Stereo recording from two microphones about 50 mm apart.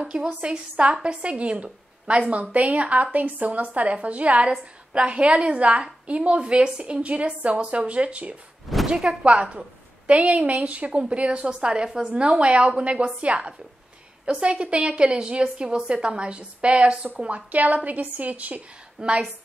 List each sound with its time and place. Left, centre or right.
0.1 s a woman's voice: right
8.6 s a sound: centre
9.2 s a woman's voice: right